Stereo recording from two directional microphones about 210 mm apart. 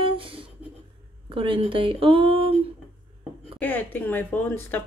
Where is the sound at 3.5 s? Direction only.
10° left (ahead or behind).